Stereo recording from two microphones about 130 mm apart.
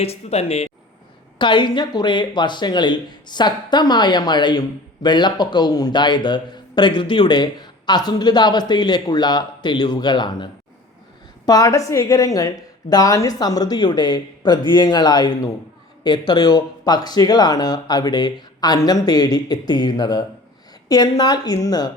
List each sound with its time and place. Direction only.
0.0 s speech: 50° left (ahead or behind)
1.4 s a man's voice: 35° left (ahead or behind)